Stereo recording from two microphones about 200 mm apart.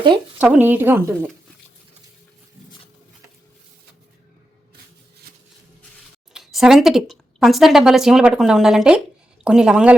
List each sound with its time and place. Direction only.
0.3 s a woman's voice: 5° right (ahead or behind)
6.3 s a woman's voice: centre (ahead or behind)